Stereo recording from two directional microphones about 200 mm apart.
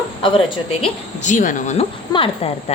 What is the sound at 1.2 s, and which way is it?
Speech, 40° left (ahead or behind).